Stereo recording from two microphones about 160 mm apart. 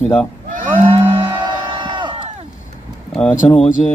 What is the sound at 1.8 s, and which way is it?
Crowd, 30° right (ahead or behind).